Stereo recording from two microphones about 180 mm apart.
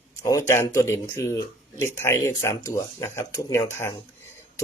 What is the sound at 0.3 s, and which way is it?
Speech, 20° left (ahead or behind).